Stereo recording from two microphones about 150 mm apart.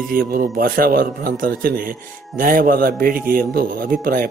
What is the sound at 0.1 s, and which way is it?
A man's voice, 80° right.